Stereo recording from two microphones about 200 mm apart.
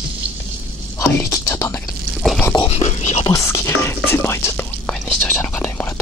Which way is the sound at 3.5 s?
10° left (ahead or behind).